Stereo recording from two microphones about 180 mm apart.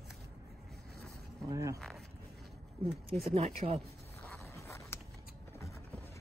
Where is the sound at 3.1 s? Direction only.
35° right (ahead or behind).